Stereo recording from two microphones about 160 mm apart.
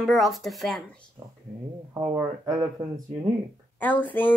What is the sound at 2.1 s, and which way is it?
Speech, 25° right (ahead or behind).